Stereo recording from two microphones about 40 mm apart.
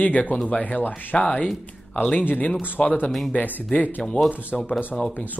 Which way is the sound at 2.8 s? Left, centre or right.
Left.